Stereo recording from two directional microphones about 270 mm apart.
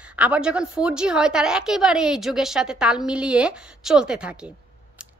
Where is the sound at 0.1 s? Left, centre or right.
Centre.